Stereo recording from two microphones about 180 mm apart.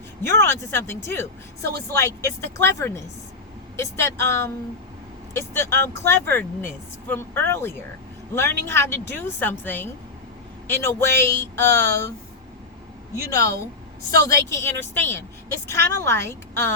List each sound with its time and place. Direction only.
0.2 s speech: 15° left (ahead or behind)
13.3 s speech: 15° left (ahead or behind)